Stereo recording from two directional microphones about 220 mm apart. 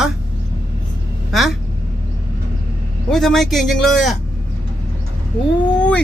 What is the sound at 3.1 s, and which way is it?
A man's voice, centre (ahead or behind).